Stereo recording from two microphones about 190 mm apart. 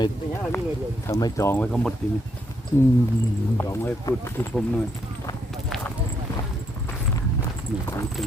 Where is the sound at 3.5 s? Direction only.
15° left (ahead or behind).